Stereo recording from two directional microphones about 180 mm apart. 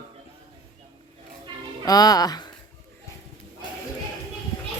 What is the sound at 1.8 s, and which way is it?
Speech, 20° left (ahead or behind).